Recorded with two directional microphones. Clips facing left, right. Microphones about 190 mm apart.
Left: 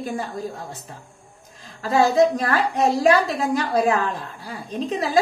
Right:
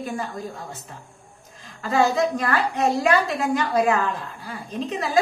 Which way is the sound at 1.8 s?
35° left (ahead or behind).